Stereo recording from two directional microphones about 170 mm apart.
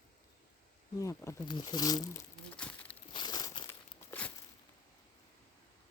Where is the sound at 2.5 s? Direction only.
5° left (ahead or behind).